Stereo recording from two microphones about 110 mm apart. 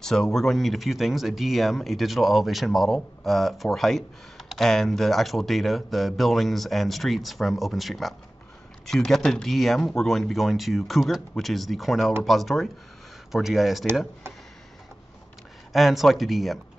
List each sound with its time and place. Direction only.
0.0 s speech: 5° left (ahead or behind)
15.7 s speech: centre (ahead or behind)